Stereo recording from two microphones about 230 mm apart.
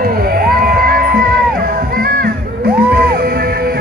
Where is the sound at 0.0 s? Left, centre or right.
Right.